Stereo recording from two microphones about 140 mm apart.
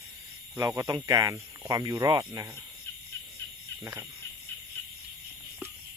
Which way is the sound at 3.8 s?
20° right (ahead or behind).